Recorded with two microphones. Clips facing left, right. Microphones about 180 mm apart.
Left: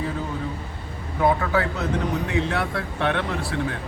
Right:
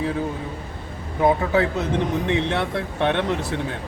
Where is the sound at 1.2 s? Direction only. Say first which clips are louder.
Right 3 dB; 20° right (ahead or behind).